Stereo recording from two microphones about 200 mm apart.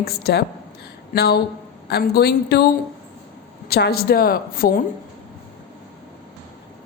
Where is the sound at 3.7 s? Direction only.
50° left (ahead or behind).